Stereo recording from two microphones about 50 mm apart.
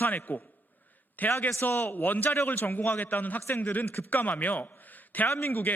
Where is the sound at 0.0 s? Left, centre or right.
Left.